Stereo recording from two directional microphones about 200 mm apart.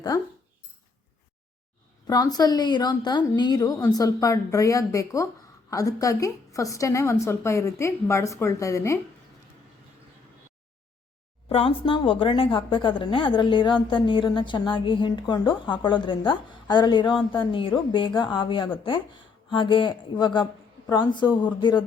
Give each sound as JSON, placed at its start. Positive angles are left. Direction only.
{"t": 0.1, "sound": "a woman's voice", "side_deg": 20}
{"t": 2.0, "sound": "a woman's voice", "side_deg": 20}
{"t": 11.4, "sound": "a woman's voice", "side_deg": 30}